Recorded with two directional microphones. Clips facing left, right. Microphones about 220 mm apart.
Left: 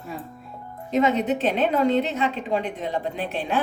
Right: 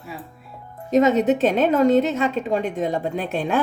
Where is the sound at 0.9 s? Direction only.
45° right (ahead or behind).